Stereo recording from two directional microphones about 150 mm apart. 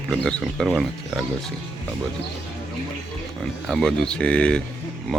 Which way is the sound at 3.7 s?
Centre (ahead or behind).